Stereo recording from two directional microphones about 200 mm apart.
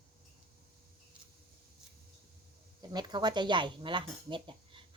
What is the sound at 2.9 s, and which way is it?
Speech, 20° right (ahead or behind).